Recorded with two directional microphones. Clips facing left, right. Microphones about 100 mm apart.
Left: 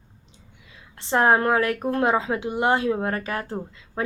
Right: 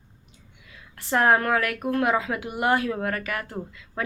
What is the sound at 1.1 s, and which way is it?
A woman's voice, 25° left (ahead or behind).